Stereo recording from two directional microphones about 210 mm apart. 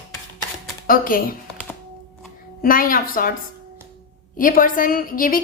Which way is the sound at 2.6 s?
40° left (ahead or behind).